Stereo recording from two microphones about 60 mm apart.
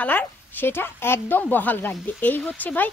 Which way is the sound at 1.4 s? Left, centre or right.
Left.